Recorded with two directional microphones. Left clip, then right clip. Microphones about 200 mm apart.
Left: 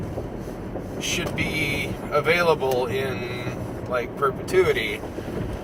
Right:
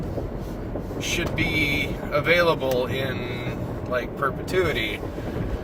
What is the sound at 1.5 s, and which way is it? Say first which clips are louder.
Speech: right 2 dB; 15° right (ahead or behind).